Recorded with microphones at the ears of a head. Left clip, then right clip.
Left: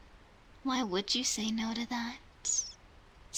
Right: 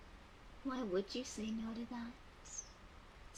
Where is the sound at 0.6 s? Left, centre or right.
Left.